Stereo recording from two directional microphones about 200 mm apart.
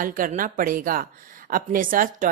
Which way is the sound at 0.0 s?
45° right (ahead or behind).